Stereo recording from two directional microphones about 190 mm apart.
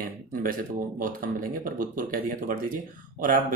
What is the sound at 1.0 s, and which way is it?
Speech, 45° right (ahead or behind).